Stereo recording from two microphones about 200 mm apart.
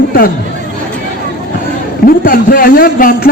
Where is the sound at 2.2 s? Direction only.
45° left (ahead or behind).